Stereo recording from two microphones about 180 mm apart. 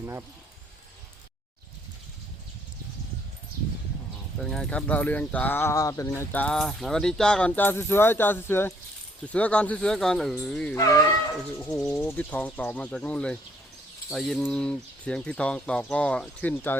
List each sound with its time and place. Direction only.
0.0 s speech: 15° right (ahead or behind)
4.4 s speech: 5° left (ahead or behind)
10.8 s speech: 20° left (ahead or behind)
11.6 s speech: 5° left (ahead or behind)